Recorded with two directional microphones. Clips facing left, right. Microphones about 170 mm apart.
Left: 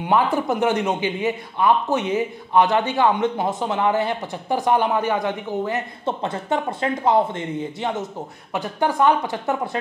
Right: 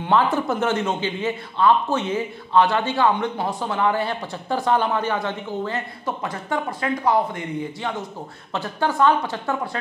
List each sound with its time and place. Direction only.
0.0 s speech: 15° left (ahead or behind)